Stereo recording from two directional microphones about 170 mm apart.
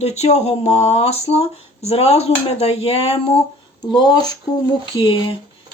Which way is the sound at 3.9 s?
25° left (ahead or behind).